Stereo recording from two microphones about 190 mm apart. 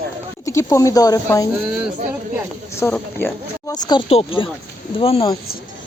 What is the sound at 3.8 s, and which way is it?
Speech, 25° left (ahead or behind).